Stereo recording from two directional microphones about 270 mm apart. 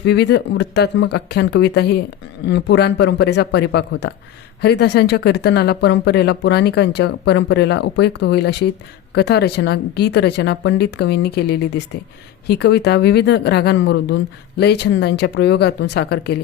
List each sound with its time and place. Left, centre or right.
0.0 s speech: left